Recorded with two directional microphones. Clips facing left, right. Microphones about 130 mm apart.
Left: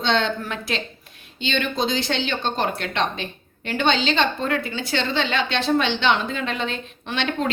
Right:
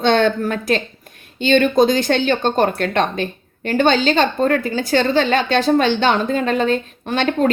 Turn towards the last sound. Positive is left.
turn(degrees=-45)  # may be behind; listen again after turning